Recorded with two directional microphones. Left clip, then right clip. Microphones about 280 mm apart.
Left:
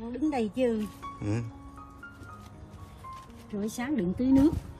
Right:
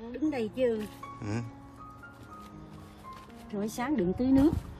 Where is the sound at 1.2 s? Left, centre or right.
Centre.